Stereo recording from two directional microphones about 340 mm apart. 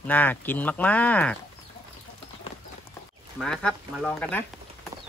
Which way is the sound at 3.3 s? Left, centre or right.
Centre.